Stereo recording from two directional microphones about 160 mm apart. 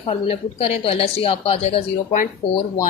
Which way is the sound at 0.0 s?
35° left (ahead or behind).